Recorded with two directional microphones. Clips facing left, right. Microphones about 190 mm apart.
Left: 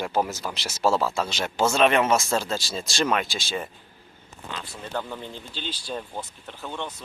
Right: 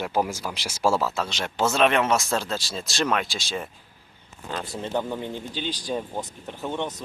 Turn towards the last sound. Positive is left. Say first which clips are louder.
# right 5 dB
turn(degrees=-20)  # may be behind; listen again after turning